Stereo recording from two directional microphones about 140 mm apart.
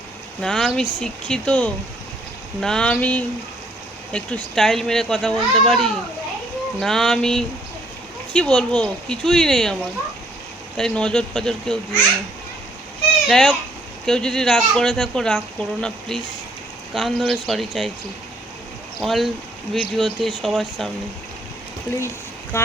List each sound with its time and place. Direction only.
0.4 s speech: 5° left (ahead or behind)
10.8 s speech: 5° left (ahead or behind)
13.2 s speech: 5° left (ahead or behind)
18.9 s speech: centre (ahead or behind)
22.5 s speech: 20° left (ahead or behind)